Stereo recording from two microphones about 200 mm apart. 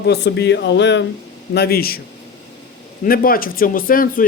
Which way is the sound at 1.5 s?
50° left (ahead or behind).